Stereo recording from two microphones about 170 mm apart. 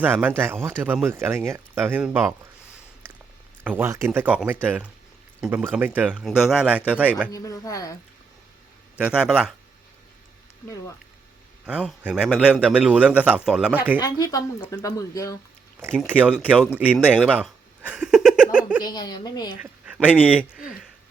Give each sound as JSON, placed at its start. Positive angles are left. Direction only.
{"t": 0.0, "sound": "a man's voice", "side_deg": -10}
{"t": 3.6, "sound": "a man's voice", "side_deg": -10}
{"t": 7.3, "sound": "speech", "side_deg": 20}
{"t": 9.0, "sound": "speech", "side_deg": -5}
{"t": 11.6, "sound": "a man's voice", "side_deg": -5}
{"t": 14.0, "sound": "speech", "side_deg": 20}
{"t": 15.8, "sound": "a man's voice", "side_deg": -10}
{"t": 18.8, "sound": "speech", "side_deg": 25}
{"t": 19.5, "sound": "a sound", "side_deg": -10}
{"t": 20.2, "sound": "a man's voice", "side_deg": -5}